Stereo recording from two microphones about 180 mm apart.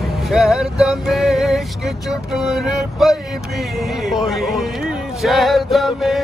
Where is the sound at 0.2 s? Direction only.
Centre (ahead or behind).